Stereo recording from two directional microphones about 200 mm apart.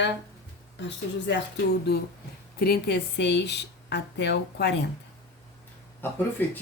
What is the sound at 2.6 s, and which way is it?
Speech, 50° left (ahead or behind).